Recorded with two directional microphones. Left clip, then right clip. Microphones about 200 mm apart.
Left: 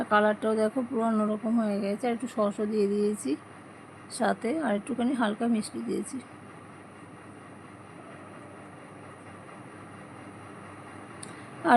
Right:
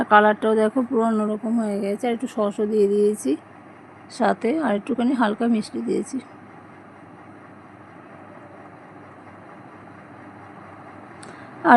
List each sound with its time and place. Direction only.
0.0 s speech: 10° right (ahead or behind)
11.6 s quack: 15° right (ahead or behind)